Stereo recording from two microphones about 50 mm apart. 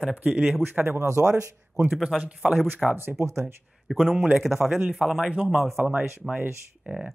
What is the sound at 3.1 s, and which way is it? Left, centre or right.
Speech, right.